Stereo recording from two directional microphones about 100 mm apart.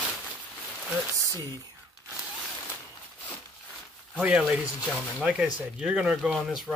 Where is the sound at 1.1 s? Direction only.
35° right (ahead or behind).